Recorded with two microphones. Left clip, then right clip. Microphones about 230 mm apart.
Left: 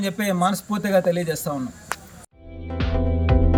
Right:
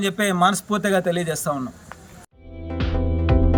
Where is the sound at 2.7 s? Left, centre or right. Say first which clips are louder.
Left 1 dB; centre.